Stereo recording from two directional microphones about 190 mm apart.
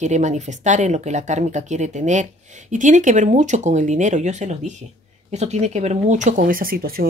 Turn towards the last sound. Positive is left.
turn(degrees=-50)  # may be behind; listen again after turning